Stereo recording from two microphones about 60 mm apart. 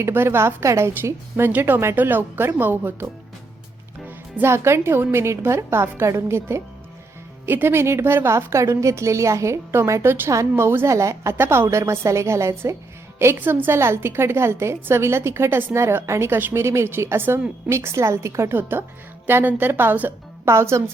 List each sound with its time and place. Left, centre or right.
0.0 s a woman's voice: right
1.5 s speech: right
4.4 s a woman's voice: right
13.4 s a woman's voice: right
18.5 s a woman's voice: right
20.5 s a woman's voice: right